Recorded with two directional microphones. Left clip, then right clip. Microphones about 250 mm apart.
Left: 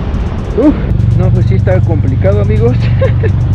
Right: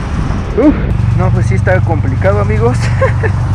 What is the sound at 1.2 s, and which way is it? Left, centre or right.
Speech, centre.